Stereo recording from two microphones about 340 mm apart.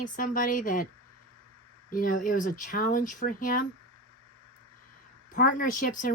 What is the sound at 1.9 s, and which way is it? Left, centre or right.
Speech, left.